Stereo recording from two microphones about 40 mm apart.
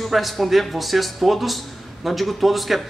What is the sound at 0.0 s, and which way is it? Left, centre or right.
A woman's voice, centre.